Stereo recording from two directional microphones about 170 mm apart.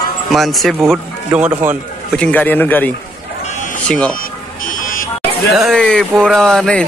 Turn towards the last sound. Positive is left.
turn(degrees=5)  # may be behind; listen again after turning